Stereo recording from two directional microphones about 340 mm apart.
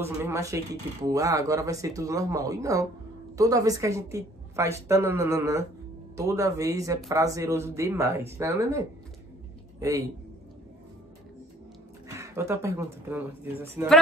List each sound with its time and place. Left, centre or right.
0.0 s a man's voice: centre
12.1 s speech: centre